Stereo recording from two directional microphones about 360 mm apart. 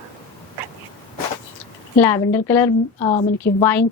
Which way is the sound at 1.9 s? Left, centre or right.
Centre.